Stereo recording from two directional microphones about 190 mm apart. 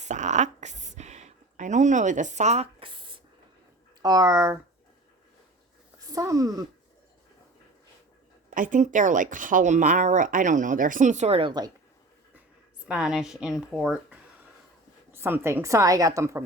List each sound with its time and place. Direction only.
0.0 s a sound: 40° right (ahead or behind)
4.0 s a woman's voice: 20° right (ahead or behind)
6.1 s speech: 20° right (ahead or behind)
8.4 s speech: 45° right (ahead or behind); by 11.7 s 25° right (ahead or behind)
12.9 s a woman's voice: 5° right (ahead or behind)